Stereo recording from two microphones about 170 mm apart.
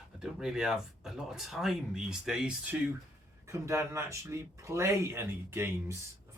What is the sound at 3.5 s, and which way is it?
Speech, 15° right (ahead or behind).